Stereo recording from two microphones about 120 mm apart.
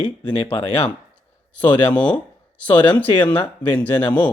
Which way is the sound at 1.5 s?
15° left (ahead or behind).